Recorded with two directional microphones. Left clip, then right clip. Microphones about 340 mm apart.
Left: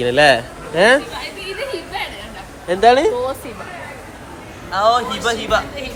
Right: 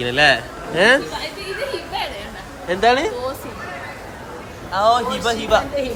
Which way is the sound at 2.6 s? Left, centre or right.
Centre.